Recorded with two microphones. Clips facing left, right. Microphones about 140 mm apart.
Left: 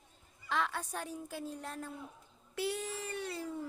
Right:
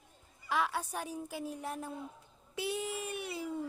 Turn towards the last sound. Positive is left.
turn(degrees=-15)  # may be behind; listen again after turning